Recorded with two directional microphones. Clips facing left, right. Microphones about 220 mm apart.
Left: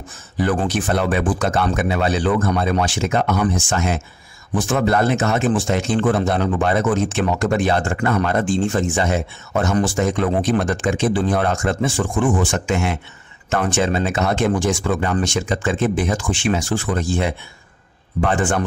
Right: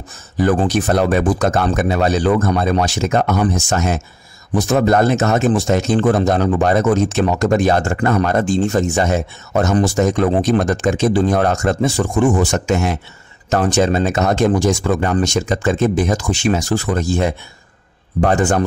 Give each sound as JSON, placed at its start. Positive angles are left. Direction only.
{"t": 0.4, "sound": "speech", "side_deg": -40}